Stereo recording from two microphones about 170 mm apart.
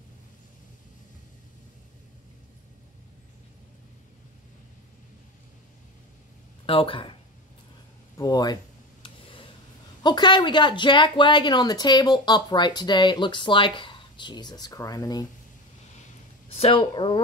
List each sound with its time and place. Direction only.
6.6 s speech: 30° left (ahead or behind)
8.2 s a woman's voice: 25° left (ahead or behind)
9.0 s a sound: 30° left (ahead or behind)
10.0 s a woman's voice: 25° left (ahead or behind)
16.5 s speech: 35° left (ahead or behind)